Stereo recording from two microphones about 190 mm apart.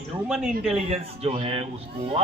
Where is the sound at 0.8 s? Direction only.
30° right (ahead or behind).